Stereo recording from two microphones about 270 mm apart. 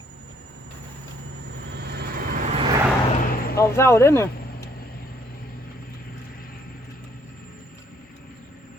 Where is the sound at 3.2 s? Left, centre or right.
Left.